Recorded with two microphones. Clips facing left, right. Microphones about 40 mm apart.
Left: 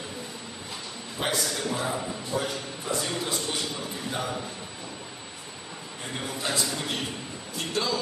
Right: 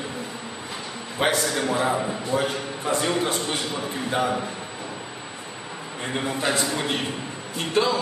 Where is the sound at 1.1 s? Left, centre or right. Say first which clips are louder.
Right 6 dB; right.